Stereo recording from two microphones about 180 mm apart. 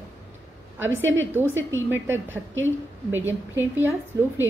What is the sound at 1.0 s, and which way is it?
Speech, 90° right.